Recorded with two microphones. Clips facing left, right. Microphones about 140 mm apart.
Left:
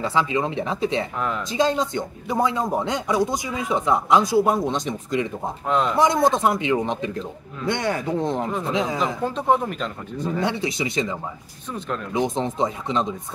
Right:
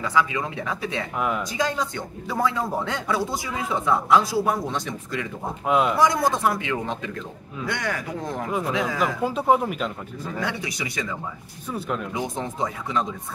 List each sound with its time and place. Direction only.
0.0 s speech: 25° left (ahead or behind)
5.7 s speech: 10° right (ahead or behind)
5.9 s speech: 25° left (ahead or behind)
9.2 s speech: 10° right (ahead or behind)
10.2 s speech: 25° left (ahead or behind)